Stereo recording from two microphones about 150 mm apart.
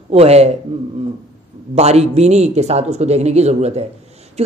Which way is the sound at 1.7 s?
45° right (ahead or behind).